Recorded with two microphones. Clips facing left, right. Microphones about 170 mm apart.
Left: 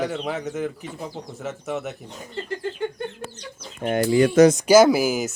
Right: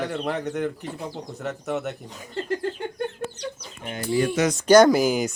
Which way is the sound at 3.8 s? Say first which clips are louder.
Left 6 dB; 60° left (ahead or behind).